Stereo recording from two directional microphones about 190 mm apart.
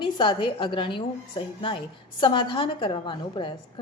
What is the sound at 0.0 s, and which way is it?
A woman's voice, 25° left (ahead or behind).